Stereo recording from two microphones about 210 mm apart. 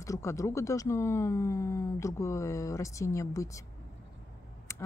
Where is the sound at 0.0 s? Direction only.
15° left (ahead or behind).